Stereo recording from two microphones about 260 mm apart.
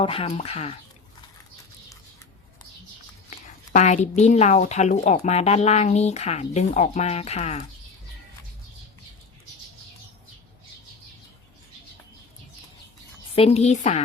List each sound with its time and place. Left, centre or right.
0.0 s a woman's voice: left
3.2 s a woman's voice: left
13.3 s a woman's voice: left